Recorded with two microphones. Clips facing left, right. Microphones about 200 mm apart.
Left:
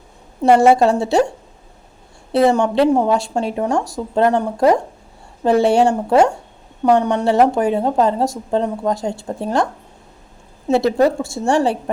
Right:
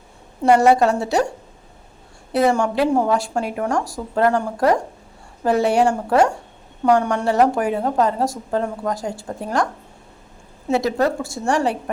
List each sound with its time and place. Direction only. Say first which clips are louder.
0.4 s a woman's voice: left 2 dB; 25° left (ahead or behind)
2.3 s a woman's voice: left 3 dB; 25° left (ahead or behind)
10.7 s a woman's voice: left 4 dB; 30° left (ahead or behind)